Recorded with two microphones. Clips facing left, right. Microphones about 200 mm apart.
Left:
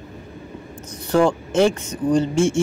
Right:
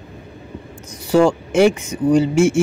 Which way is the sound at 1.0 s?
10° right (ahead or behind).